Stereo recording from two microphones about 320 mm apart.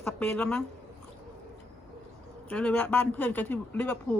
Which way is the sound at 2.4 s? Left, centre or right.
Centre.